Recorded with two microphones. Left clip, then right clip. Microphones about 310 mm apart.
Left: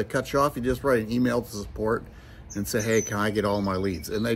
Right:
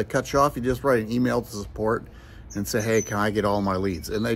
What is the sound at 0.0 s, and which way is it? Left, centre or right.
Speech, centre.